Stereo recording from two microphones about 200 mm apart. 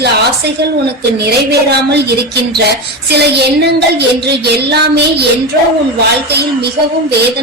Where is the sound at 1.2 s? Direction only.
55° right (ahead or behind).